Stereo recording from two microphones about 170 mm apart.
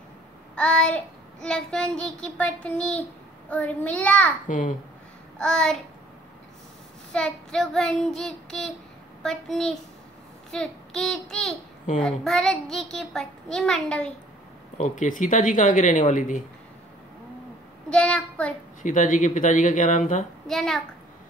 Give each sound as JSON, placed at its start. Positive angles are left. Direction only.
{"t": 0.6, "sound": "a child's voice", "side_deg": 5}
{"t": 4.5, "sound": "speech", "side_deg": 50}
{"t": 5.4, "sound": "a child's voice", "side_deg": 5}
{"t": 7.1, "sound": "a child's voice", "side_deg": 5}
{"t": 10.5, "sound": "child singing", "side_deg": 5}
{"t": 12.0, "sound": "a child's voice", "side_deg": 0}
{"t": 14.8, "sound": "speech", "side_deg": 50}
{"t": 17.8, "sound": "a child's voice", "side_deg": 5}
{"t": 18.8, "sound": "speech", "side_deg": 50}
{"t": 20.4, "sound": "a child's voice", "side_deg": 0}